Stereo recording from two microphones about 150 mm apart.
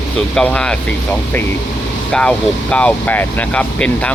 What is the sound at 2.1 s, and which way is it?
Speech, 5° left (ahead or behind).